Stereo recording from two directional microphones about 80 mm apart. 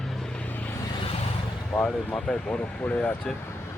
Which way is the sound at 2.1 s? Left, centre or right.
Centre.